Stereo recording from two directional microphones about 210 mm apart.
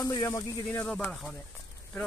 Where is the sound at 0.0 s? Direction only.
15° left (ahead or behind).